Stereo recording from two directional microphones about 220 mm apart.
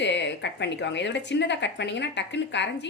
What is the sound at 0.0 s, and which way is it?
A woman's voice, 50° left (ahead or behind).